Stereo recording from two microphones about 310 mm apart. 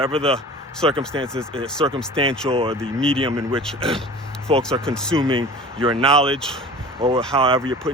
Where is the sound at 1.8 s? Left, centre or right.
Centre.